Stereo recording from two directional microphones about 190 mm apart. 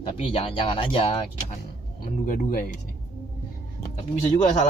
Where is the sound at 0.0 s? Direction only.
30° left (ahead or behind).